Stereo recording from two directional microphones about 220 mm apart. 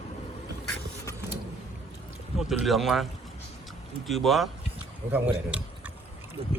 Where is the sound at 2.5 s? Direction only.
Centre (ahead or behind).